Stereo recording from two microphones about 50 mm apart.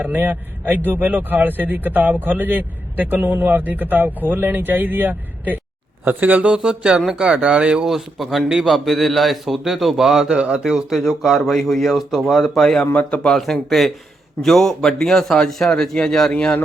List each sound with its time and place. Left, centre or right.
0.0 s speech: right
6.5 s speech: centre
7.9 s speech: centre
10.3 s speech: right; by 12.9 s centre
13.0 s speech: left
13.2 s speech: centre
16.3 s speech: left